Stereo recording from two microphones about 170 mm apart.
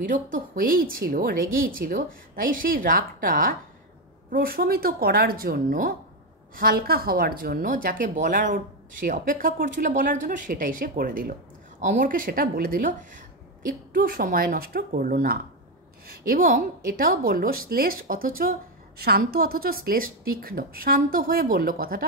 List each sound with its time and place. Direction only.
0.0 s a woman's voice: 50° right (ahead or behind)